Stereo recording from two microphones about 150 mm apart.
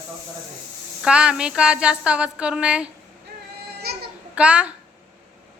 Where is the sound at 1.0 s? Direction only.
5° right (ahead or behind).